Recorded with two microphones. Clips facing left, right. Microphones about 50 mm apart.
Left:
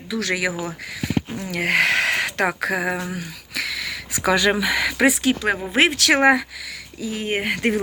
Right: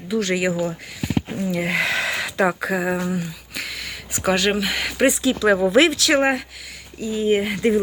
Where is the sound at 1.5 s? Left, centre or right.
Left.